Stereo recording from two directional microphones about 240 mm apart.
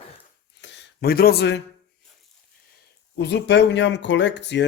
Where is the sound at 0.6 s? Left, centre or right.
Left.